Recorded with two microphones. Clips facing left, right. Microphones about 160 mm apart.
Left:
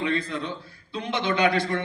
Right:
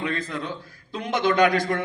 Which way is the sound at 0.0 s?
45° right (ahead or behind).